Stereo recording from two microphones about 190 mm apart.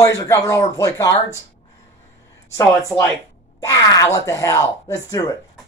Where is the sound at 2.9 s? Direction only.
10° left (ahead or behind).